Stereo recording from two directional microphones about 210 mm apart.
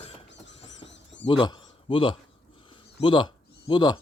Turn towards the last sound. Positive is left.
turn(degrees=20)  # may be behind; listen again after turning